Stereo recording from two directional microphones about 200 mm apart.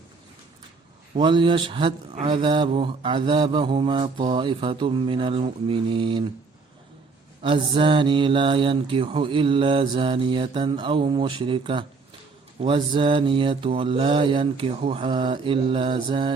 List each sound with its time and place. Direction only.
1.1 s speech: 25° right (ahead or behind)
7.4 s speech: 25° right (ahead or behind)